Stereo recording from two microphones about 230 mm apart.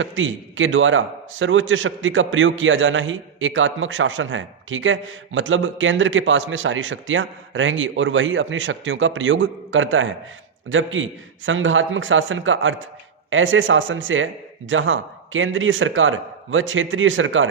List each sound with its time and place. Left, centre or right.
0.0 s a man's voice: right